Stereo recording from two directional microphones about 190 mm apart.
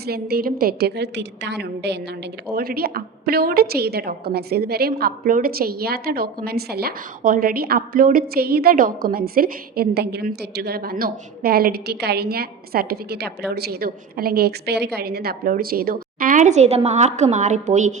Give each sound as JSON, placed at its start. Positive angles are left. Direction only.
{"t": 0.1, "sound": "a woman's voice", "side_deg": -55}